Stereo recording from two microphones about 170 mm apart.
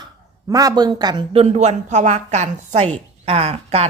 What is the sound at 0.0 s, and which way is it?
Speech, 20° right (ahead or behind).